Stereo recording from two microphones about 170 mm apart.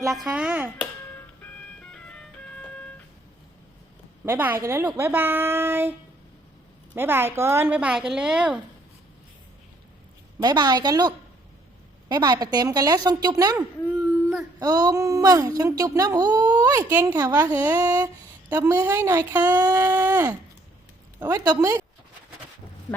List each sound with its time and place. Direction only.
0.1 s dishes: 5° right (ahead or behind)
0.8 s music: 10° left (ahead or behind)
4.3 s a woman's voice: 10° right (ahead or behind)
6.9 s a woman's voice: 15° right (ahead or behind)
10.4 s speech: 25° right (ahead or behind)
13.8 s baby cry: 10° right (ahead or behind)
14.6 s a woman's voice: 20° right (ahead or behind)
19.5 s speech: 20° right (ahead or behind)
19.8 s a sound: 10° right (ahead or behind)
21.2 s speech: 20° right (ahead or behind)